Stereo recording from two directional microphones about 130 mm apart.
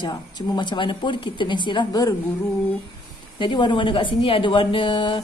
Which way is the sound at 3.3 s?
40° left (ahead or behind).